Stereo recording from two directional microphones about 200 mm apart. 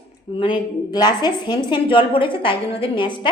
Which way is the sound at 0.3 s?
25° left (ahead or behind).